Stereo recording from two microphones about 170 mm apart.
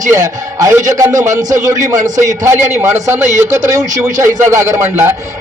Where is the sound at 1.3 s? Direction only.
45° right (ahead or behind).